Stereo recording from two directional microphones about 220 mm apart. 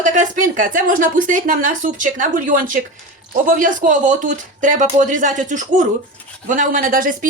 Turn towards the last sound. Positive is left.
turn(degrees=-40)  # may be behind; listen again after turning